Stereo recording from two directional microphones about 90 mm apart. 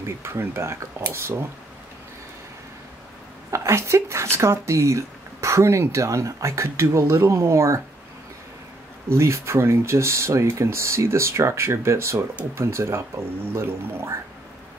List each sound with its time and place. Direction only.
0.0 s speech: 30° right (ahead or behind)
3.5 s speech: 30° right (ahead or behind)
9.1 s speech: 30° right (ahead or behind)